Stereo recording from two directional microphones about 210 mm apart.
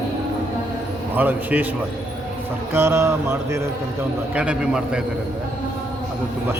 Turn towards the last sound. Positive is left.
turn(degrees=-5)  # may be behind; listen again after turning